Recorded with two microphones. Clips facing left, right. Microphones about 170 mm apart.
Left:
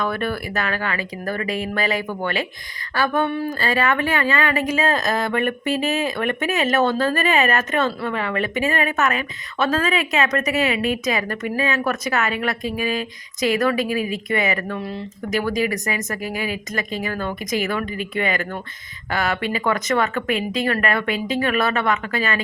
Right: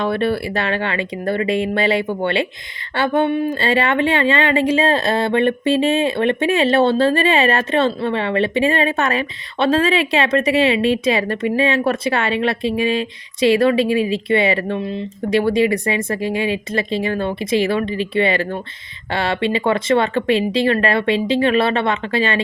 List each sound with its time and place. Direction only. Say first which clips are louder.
0.0 s a woman's voice: right 5 dB; 30° right (ahead or behind)